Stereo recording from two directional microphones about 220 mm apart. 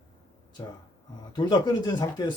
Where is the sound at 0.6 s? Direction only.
20° left (ahead or behind).